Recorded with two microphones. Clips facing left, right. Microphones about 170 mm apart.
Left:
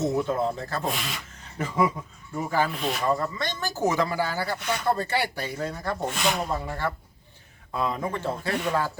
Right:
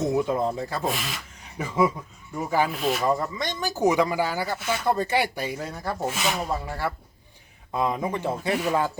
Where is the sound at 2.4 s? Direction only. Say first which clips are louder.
Right 2 dB; 15° right (ahead or behind).